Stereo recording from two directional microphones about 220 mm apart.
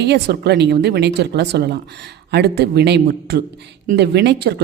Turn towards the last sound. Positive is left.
turn(degrees=-50)  # may be behind; listen again after turning